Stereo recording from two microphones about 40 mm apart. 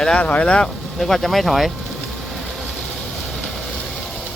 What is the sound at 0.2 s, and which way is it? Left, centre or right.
Speech, left.